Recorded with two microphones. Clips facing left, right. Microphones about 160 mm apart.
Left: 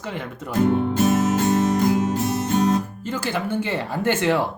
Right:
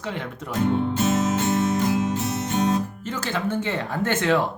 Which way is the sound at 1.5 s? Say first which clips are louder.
Left 3 dB; 45° left (ahead or behind).